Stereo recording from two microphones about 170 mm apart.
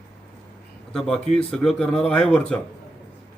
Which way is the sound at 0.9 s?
Centre (ahead or behind).